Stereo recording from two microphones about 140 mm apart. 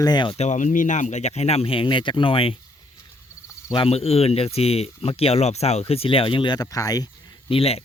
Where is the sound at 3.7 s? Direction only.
45° left (ahead or behind); by 7.1 s 25° left (ahead or behind).